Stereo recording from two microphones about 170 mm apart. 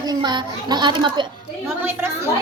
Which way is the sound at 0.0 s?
25° right (ahead or behind).